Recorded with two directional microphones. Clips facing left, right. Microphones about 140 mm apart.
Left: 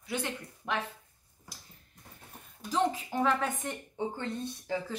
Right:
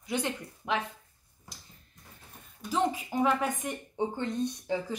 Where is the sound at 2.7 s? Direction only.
10° right (ahead or behind).